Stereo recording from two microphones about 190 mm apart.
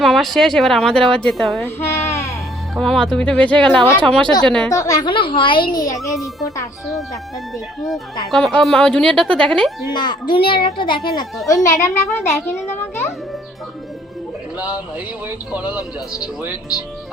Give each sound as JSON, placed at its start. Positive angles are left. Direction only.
{"t": 0.0, "sound": "a woman's voice", "side_deg": 0}
{"t": 1.8, "sound": "a sound", "side_deg": 15}
{"t": 2.7, "sound": "a woman's voice", "side_deg": 0}
{"t": 4.7, "sound": "a woman's voice", "side_deg": 20}
{"t": 8.3, "sound": "a woman's voice", "side_deg": 0}
{"t": 9.9, "sound": "a woman's voice", "side_deg": 25}
{"t": 12.8, "sound": "music", "side_deg": 15}
{"t": 15.5, "sound": "speech", "side_deg": -5}